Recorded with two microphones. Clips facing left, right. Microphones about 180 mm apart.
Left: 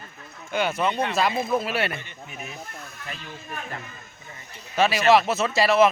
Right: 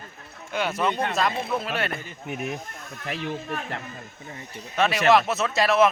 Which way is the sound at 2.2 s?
65° right (ahead or behind).